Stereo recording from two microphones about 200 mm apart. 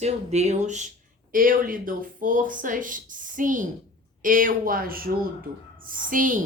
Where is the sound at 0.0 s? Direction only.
35° right (ahead or behind).